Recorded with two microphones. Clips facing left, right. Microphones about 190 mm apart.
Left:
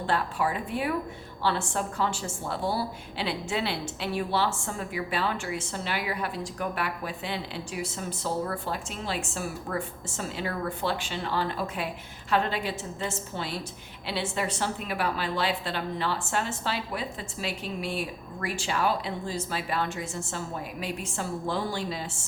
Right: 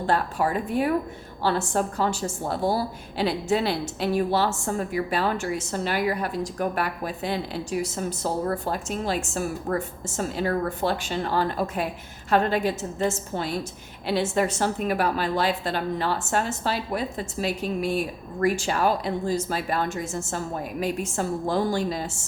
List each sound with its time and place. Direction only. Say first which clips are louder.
0.0 s a woman's voice: right 4 dB; 40° right (ahead or behind)